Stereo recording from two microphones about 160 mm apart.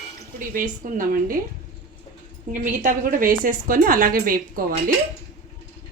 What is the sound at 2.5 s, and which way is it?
A woman's voice, 55° right (ahead or behind).